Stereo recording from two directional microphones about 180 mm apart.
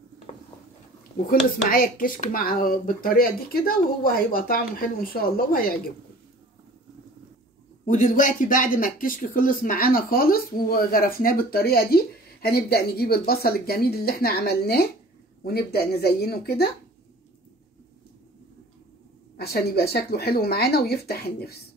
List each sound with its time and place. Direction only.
1.7 s speech: 50° left (ahead or behind)
7.8 s speech: 45° left (ahead or behind)
19.3 s speech: 60° left (ahead or behind)